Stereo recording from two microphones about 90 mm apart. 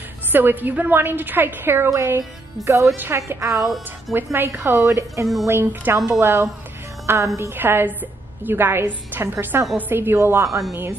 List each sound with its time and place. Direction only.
0.3 s a woman's voice: 20° right (ahead or behind)
3.5 s speech: centre (ahead or behind)
4.1 s a woman's voice: 25° right (ahead or behind)
5.2 s speech: centre (ahead or behind)
5.5 s a woman's voice: 25° right (ahead or behind)